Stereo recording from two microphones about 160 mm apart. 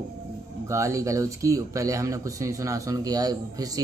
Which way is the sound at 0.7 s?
20° right (ahead or behind).